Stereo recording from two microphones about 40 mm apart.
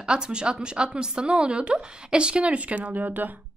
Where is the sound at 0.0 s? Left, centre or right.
Right.